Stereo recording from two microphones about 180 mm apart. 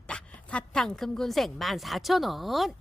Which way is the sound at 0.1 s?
5° left (ahead or behind).